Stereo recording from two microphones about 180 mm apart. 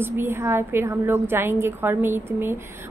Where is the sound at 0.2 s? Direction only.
10° right (ahead or behind).